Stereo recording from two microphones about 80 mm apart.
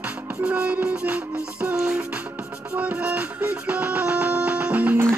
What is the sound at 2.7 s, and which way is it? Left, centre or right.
Music, centre.